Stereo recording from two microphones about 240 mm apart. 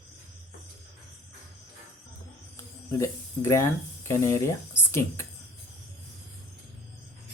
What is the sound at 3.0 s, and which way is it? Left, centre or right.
Speech, centre.